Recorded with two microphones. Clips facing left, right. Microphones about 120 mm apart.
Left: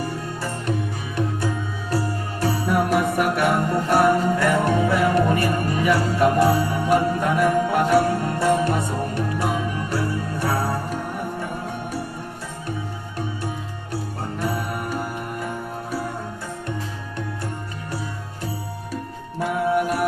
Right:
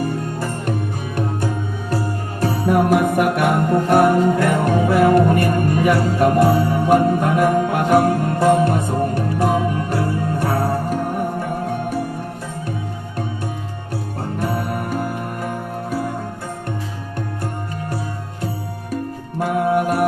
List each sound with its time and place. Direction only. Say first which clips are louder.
0.0 s music: right 5 dB; 50° right (ahead or behind)
2.4 s music: right 4 dB; 45° right (ahead or behind)
13.9 s music: right 3 dB; 50° right (ahead or behind)
19.4 s music: right 3 dB; 50° right (ahead or behind)